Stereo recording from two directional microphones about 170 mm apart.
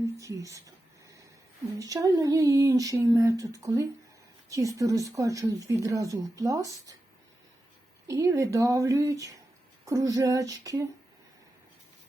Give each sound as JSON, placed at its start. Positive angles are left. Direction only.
{"t": 0.2, "sound": "speech", "side_deg": -20}
{"t": 1.8, "sound": "speech", "side_deg": -20}
{"t": 8.0, "sound": "speech", "side_deg": -20}